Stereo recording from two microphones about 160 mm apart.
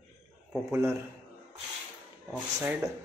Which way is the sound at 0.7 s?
15° right (ahead or behind).